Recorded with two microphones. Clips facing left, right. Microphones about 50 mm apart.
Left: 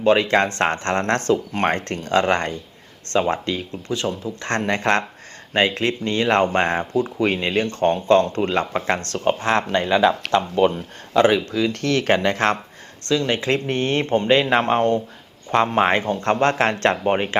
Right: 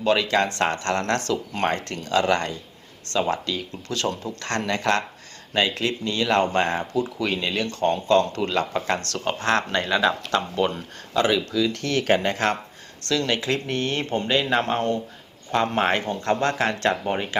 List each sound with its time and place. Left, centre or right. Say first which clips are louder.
0.0 s speech: left 4 dB; left
4.4 s speech: left 3 dB; left
10.3 s speech: left 5 dB; left
13.1 s speech: left 3 dB; left
15.6 s speech: left 3 dB; centre